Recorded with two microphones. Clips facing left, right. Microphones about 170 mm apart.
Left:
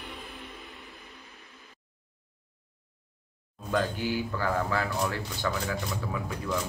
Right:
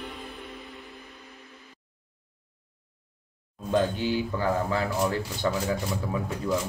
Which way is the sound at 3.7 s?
20° right (ahead or behind).